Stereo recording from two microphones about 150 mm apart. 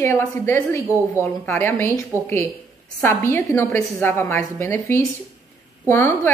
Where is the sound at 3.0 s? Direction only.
15° left (ahead or behind).